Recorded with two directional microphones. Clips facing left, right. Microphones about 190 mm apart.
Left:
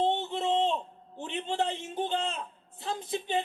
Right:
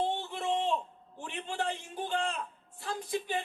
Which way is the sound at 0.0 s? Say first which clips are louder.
Left 4 dB; 20° left (ahead or behind).